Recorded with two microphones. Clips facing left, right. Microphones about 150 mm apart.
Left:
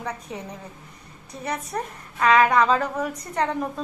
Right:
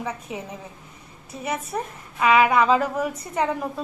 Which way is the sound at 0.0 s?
5° right (ahead or behind).